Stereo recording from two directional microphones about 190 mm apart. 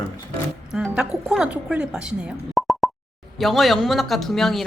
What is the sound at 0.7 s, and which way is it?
A woman's voice, 5° right (ahead or behind).